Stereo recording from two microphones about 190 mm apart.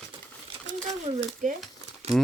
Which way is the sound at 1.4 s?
40° right (ahead or behind).